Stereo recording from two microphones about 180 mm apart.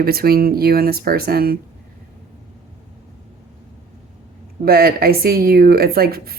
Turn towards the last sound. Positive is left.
turn(degrees=-60)  # may be behind; listen again after turning